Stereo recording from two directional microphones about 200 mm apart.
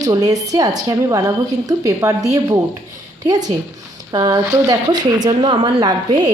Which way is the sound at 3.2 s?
20° right (ahead or behind).